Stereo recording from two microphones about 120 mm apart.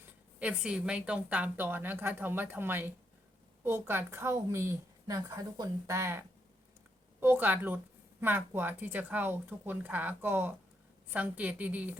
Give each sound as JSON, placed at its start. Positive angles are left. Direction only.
{"t": 0.3, "sound": "a woman's voice", "side_deg": -10}